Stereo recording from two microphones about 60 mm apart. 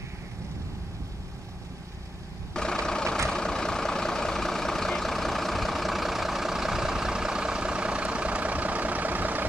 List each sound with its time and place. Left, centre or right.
2.5 s vehicle: centre; by 9.5 s right